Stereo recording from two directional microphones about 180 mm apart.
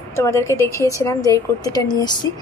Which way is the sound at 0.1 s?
15° left (ahead or behind).